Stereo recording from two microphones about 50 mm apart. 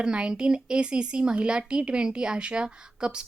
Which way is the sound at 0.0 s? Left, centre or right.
Centre.